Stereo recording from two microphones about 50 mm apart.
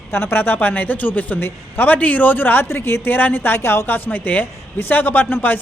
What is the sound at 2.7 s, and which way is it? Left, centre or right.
A man's voice, left.